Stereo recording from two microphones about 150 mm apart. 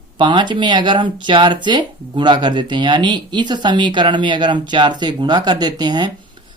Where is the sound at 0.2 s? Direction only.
30° right (ahead or behind).